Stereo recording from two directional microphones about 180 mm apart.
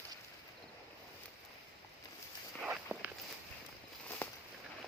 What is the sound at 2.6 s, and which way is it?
Walk, 5° right (ahead or behind).